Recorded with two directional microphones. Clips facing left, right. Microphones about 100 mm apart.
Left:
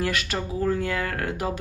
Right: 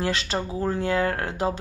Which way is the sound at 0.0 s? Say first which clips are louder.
Right 1 dB; 30° right (ahead or behind).